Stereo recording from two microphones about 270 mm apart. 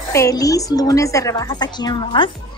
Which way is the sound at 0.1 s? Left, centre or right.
Centre.